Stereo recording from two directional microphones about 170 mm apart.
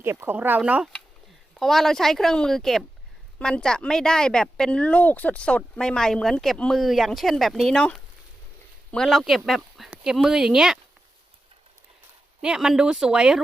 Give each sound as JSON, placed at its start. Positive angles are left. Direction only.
{"t": 0.0, "sound": "speech", "side_deg": -15}
{"t": 12.4, "sound": "speech", "side_deg": -5}